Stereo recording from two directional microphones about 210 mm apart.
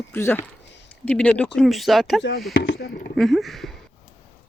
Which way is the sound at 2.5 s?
60° left (ahead or behind).